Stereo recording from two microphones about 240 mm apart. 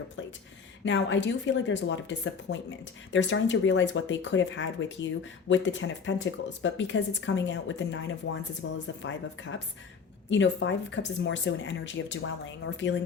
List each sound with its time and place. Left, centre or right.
0.9 s speech: left